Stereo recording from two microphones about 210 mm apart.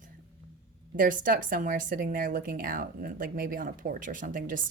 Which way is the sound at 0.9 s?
40° right (ahead or behind).